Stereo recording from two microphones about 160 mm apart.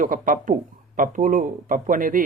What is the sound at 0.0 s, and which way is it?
Speech, 60° right (ahead or behind).